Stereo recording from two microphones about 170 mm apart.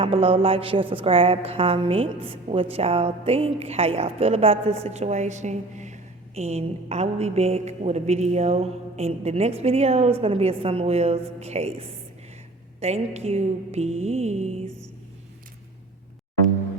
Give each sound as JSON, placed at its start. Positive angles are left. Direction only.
{"t": 0.0, "sound": "a woman's voice", "side_deg": -35}